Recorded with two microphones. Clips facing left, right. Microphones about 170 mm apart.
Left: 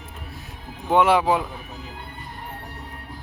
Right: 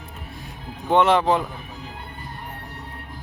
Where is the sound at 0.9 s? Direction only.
10° left (ahead or behind).